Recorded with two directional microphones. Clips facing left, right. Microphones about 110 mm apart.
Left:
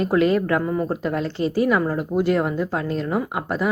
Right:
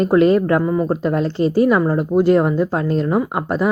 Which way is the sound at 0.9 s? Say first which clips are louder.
Right 5 dB; 30° right (ahead or behind).